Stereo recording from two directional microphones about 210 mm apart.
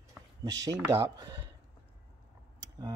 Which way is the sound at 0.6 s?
15° right (ahead or behind).